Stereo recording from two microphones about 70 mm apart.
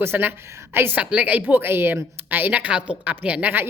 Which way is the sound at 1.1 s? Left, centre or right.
Right.